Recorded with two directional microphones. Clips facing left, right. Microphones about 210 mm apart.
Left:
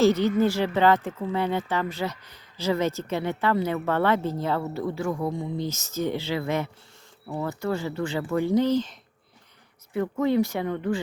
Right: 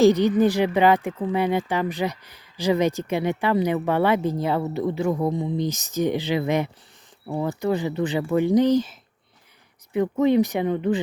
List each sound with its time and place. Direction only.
0.0 s speech: 15° right (ahead or behind)